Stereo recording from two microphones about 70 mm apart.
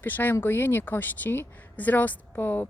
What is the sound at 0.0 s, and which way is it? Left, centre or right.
Speech, left.